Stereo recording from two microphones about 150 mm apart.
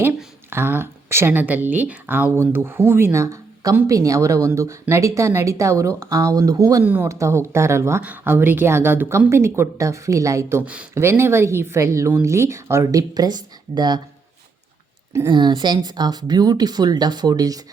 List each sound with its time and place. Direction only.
0.5 s speech: 15° right (ahead or behind)
6.8 s speech: 10° right (ahead or behind); by 14.0 s 30° right (ahead or behind)
15.3 s speech: 30° right (ahead or behind)